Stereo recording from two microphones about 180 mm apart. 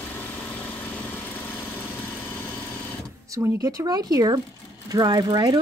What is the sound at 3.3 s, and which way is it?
Speech, 15° right (ahead or behind).